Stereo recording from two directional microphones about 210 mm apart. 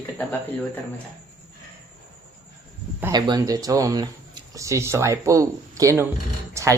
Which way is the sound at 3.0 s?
15° right (ahead or behind).